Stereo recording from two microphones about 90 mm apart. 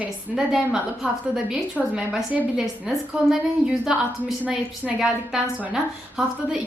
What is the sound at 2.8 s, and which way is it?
A woman's voice, 5° right (ahead or behind).